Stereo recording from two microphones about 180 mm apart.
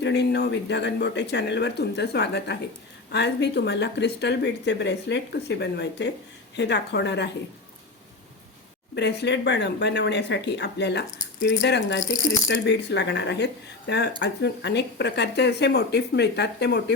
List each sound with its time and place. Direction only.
0.0 s speech: 70° left (ahead or behind)
9.0 s speech: 70° left (ahead or behind)